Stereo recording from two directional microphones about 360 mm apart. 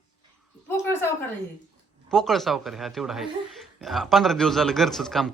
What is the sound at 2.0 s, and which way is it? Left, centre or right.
Speech, centre.